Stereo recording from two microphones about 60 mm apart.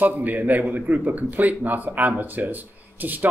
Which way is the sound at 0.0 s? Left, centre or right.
Right.